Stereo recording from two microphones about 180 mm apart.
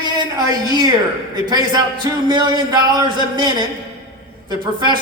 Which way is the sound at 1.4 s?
25° right (ahead or behind).